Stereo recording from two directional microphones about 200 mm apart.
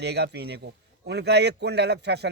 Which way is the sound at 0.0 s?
55° right (ahead or behind).